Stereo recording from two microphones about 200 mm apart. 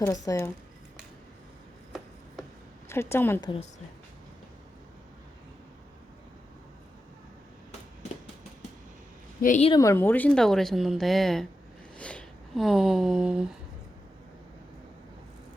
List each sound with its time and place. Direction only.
0.0 s a woman's voice: 15° left (ahead or behind)
2.9 s a woman's voice: 10° left (ahead or behind)
9.4 s a woman's voice: 40° left (ahead or behind)
9.6 s speech: 20° left (ahead or behind); by 13.6 s 5° right (ahead or behind)